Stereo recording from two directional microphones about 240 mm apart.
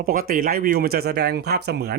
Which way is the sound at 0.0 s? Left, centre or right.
Right.